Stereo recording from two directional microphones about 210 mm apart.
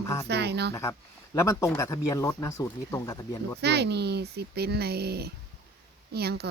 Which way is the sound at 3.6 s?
50° right (ahead or behind).